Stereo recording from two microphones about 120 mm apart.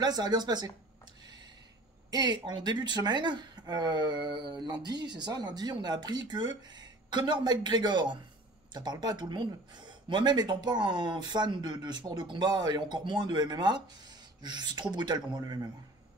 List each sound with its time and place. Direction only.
0.0 s speech: 35° right (ahead or behind)
2.0 s speech: 35° right (ahead or behind)